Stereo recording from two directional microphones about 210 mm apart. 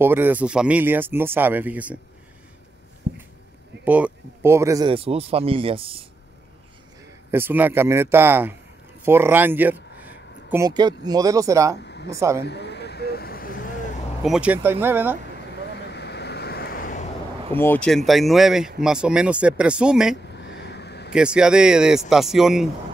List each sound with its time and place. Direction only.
0.0 s speech: 10° right (ahead or behind)
3.1 s a sound: 50° right (ahead or behind)
3.8 s speech: 5° right (ahead or behind); by 6.0 s 25° right (ahead or behind)
7.2 s speech: 10° right (ahead or behind)
10.0 s a sound: 15° right (ahead or behind)
11.1 s speech: 15° right (ahead or behind)
11.8 s a sound: 55° left (ahead or behind)
12.1 s speech: 15° right (ahead or behind)
12.4 s vehicle: 55° left (ahead or behind)
14.2 s speech: 5° right (ahead or behind)
15.7 s vehicle: 55° left (ahead or behind)
17.6 s speech: 10° left (ahead or behind)
20.3 s a sound: 55° left (ahead or behind)
21.1 s speech: 5° right (ahead or behind)